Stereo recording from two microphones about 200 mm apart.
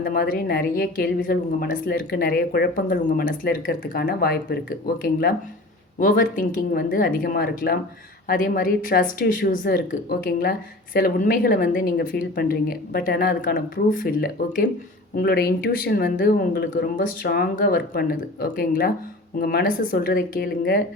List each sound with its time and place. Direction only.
0.0 s a woman's voice: 45° left (ahead or behind)
6.0 s a woman's voice: 45° left (ahead or behind)